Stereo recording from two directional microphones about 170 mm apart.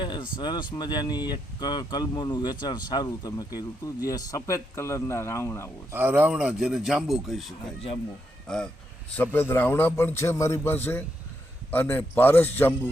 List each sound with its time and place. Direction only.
0.0 s a sound: 25° left (ahead or behind)
0.3 s a man's voice: 25° left (ahead or behind)
5.9 s a man's voice: 10° right (ahead or behind); by 12.9 s 10° left (ahead or behind)